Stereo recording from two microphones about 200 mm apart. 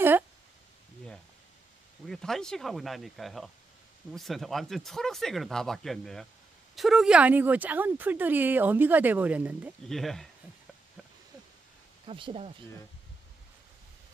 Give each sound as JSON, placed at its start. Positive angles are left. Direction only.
{"t": 2.0, "sound": "speech", "side_deg": 0}
{"t": 12.1, "sound": "speech", "side_deg": -30}